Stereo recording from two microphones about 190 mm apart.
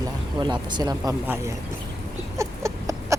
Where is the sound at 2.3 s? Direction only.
15° right (ahead or behind).